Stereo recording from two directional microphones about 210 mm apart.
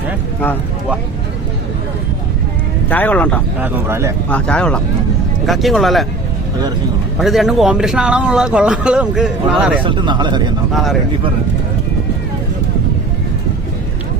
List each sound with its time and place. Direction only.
2.9 s speech: 10° left (ahead or behind)
3.6 s speech: 15° right (ahead or behind)
4.3 s speech: 5° left (ahead or behind)
7.2 s speech: centre (ahead or behind)
9.8 s speech: 20° right (ahead or behind)